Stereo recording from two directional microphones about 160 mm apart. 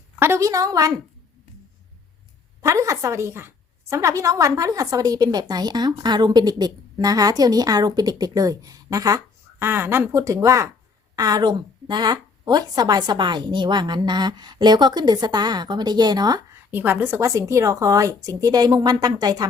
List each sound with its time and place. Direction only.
0.2 s a woman's voice: 20° right (ahead or behind)
2.6 s a woman's voice: 20° right (ahead or behind)
16.7 s a woman's voice: 10° right (ahead or behind)